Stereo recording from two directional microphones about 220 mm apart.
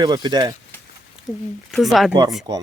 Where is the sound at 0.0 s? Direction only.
20° right (ahead or behind).